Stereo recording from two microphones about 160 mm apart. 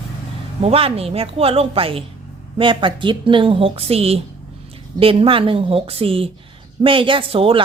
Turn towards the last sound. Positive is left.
turn(degrees=-35)  # may be behind; listen again after turning